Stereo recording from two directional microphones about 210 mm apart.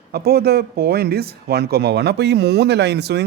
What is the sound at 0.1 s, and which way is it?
A man's voice, 50° right (ahead or behind).